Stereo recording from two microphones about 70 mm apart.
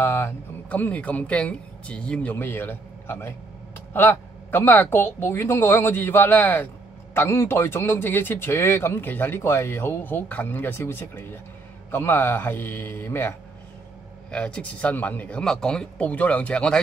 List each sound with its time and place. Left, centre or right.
0.0 s a man's voice: left
0.7 s speech: left
2.3 s speech: left
7.2 s speech: left
14.3 s speech: centre
15.4 s speech: centre
16.1 s speech: left